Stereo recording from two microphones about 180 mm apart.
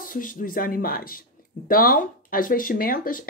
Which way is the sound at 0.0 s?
50° left (ahead or behind).